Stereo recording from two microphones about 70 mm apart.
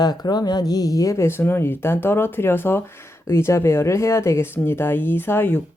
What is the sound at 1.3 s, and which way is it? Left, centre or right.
Speech, left.